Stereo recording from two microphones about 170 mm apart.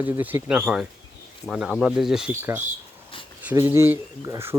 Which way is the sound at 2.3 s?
15° right (ahead or behind).